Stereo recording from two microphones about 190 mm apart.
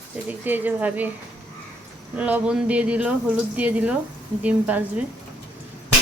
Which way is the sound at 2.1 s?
10° right (ahead or behind).